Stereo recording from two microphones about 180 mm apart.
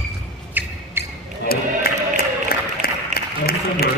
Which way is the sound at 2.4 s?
55° left (ahead or behind).